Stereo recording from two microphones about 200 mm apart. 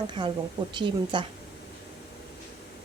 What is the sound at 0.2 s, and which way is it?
Speech, 20° right (ahead or behind).